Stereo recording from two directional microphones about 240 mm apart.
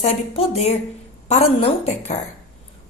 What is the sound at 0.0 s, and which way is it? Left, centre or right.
A woman's voice, left.